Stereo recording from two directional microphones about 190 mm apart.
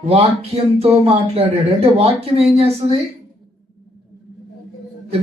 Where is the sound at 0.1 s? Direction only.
30° right (ahead or behind).